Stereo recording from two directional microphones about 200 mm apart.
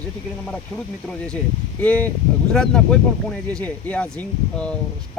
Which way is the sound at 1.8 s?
5° left (ahead or behind).